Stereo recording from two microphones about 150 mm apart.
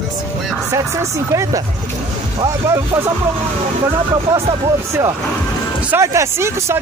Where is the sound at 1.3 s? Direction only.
20° right (ahead or behind).